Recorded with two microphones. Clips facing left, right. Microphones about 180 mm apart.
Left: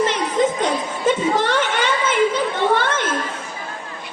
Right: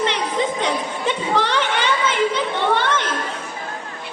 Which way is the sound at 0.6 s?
45° left (ahead or behind).